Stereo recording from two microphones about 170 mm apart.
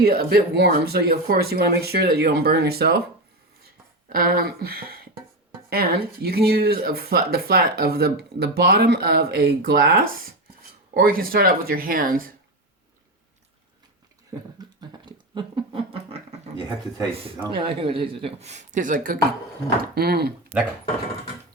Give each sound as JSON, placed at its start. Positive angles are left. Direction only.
{"t": 0.0, "sound": "speech", "side_deg": -65}
{"t": 4.1, "sound": "speech", "side_deg": -60}
{"t": 14.8, "sound": "a sound", "side_deg": -25}
{"t": 17.1, "sound": "speech", "side_deg": -35}
{"t": 19.8, "sound": "speech", "side_deg": -65}